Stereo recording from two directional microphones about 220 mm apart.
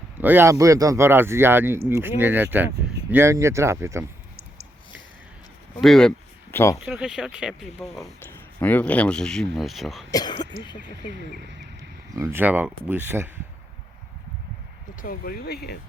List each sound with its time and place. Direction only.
0.2 s speech: 10° right (ahead or behind)
5.8 s speech: centre (ahead or behind)
6.7 s speech: 5° right (ahead or behind)
10.1 s speech: 15° left (ahead or behind)
12.1 s speech: 10° right (ahead or behind)
15.0 s speech: 40° left (ahead or behind)